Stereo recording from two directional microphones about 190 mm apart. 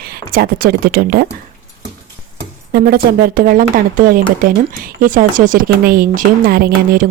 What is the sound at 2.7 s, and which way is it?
Speech, 50° right (ahead or behind).